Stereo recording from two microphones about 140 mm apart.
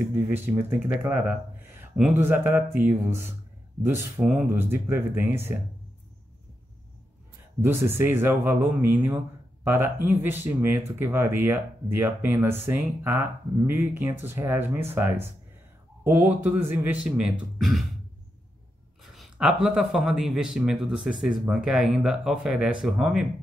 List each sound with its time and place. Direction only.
0.3 s speech: 15° right (ahead or behind)
1.8 s a sound: 5° right (ahead or behind)
2.1 s speech: 15° right (ahead or behind)
4.2 s speech: centre (ahead or behind)
4.6 s speech: 15° right (ahead or behind)
7.6 s speech: 15° right (ahead or behind); by 17.8 s centre (ahead or behind)
19.0 s speech: centre (ahead or behind)